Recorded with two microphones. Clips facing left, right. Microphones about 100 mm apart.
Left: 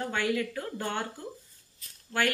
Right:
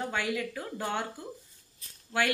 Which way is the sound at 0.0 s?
15° right (ahead or behind).